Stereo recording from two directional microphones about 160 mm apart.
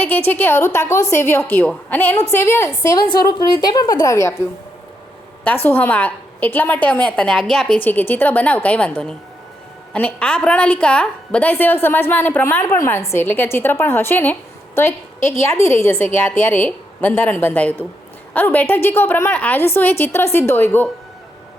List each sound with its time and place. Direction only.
0.3 s a woman's voice: 15° left (ahead or behind)
5.6 s a woman's voice: 10° left (ahead or behind)